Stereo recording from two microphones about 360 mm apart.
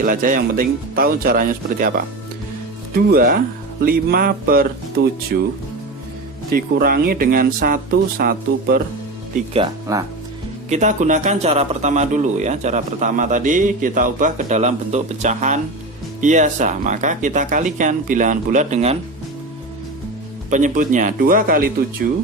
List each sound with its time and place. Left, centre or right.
0.0 s a man's voice: right
2.9 s a man's voice: right
6.5 s a man's voice: right
9.5 s a man's voice: centre
20.5 s a man's voice: right